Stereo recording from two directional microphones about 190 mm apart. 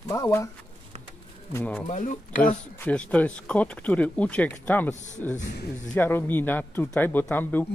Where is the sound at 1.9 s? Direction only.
40° left (ahead or behind).